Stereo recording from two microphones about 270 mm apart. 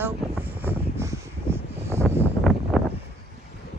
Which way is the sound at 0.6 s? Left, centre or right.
Centre.